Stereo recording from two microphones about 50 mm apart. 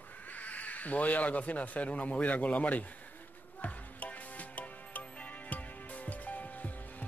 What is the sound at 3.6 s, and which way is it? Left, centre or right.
Music, left.